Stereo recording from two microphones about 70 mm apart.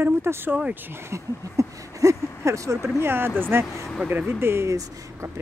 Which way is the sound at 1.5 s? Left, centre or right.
Right.